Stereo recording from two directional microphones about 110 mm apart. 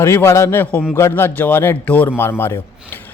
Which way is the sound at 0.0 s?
25° left (ahead or behind).